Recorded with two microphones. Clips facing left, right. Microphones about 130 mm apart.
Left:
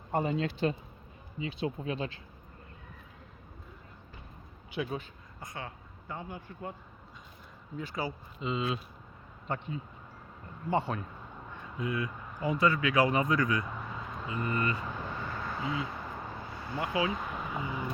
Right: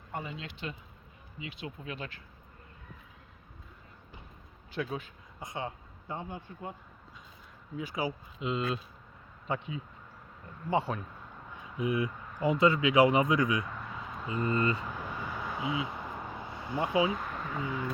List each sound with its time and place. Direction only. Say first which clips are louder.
0.1 s speech: left 10 dB; 40° left (ahead or behind)
4.7 s speech: even; 5° left (ahead or behind)
5.4 s speech: right 4 dB; 20° right (ahead or behind)
7.8 s speech: right 2 dB; 10° right (ahead or behind)
8.4 s speech: even; centre (ahead or behind)
11.8 s speech: right 3 dB; 20° right (ahead or behind)
13.7 s a sound: left 1 dB; 5° left (ahead or behind)
14.3 s speech: right 3 dB; 25° right (ahead or behind)
14.8 s vehicle: left 1 dB; 10° right (ahead or behind)
17.1 s speech: even; centre (ahead or behind)